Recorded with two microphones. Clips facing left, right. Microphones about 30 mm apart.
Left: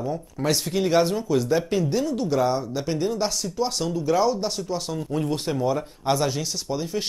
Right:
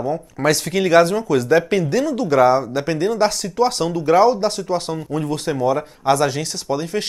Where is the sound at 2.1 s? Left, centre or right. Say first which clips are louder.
Right 11 dB; right.